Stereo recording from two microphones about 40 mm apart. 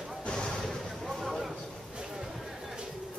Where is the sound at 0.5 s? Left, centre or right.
Centre.